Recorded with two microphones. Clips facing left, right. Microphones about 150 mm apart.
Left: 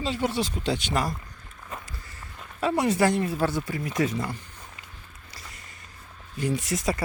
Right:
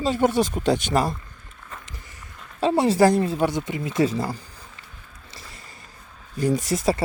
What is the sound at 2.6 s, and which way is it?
Speech, 30° right (ahead or behind).